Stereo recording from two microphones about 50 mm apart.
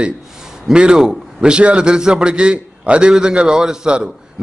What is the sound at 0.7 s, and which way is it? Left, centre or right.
A man's voice, centre.